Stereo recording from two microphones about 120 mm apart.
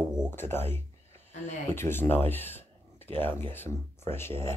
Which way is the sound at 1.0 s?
60° right (ahead or behind).